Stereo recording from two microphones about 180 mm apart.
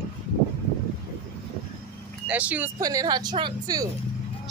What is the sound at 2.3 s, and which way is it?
Speech, 10° right (ahead or behind).